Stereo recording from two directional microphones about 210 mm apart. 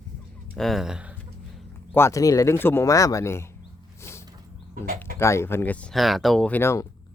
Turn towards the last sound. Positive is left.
turn(degrees=10)  # may be behind; listen again after turning